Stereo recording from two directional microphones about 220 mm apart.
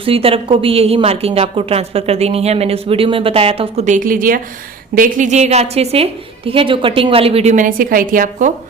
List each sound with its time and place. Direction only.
0.0 s a woman's voice: 25° right (ahead or behind)